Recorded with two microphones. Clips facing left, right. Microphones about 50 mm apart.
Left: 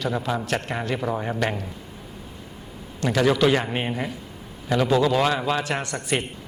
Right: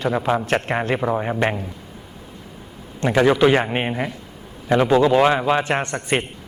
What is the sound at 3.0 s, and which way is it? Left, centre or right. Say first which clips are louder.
A man's voice: right 4 dB; right.